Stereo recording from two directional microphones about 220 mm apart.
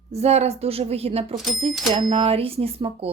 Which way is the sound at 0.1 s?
30° right (ahead or behind).